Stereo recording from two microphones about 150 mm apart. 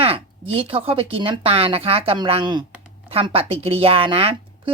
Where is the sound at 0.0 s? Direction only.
40° right (ahead or behind).